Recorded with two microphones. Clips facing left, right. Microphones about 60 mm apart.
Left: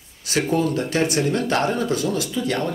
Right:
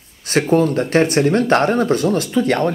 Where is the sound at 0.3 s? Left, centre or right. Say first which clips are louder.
Right 6 dB; right.